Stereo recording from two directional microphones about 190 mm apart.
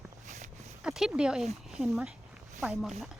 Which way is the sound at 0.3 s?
40° right (ahead or behind).